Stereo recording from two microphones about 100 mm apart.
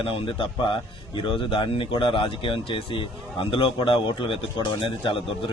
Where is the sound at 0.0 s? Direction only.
60° left (ahead or behind).